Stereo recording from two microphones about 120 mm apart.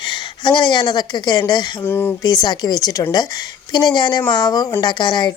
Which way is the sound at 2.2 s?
35° left (ahead or behind).